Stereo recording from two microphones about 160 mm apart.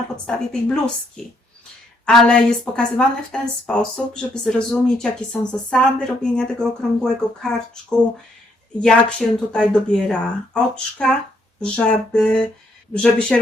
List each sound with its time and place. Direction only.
0.3 s a woman's voice: 5° left (ahead or behind)